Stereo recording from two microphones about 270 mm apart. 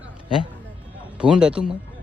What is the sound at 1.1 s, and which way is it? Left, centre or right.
Speech, centre.